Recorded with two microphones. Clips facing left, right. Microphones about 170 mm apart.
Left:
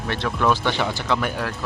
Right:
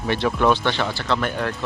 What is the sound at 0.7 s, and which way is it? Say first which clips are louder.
Speech: even; 15° left (ahead or behind).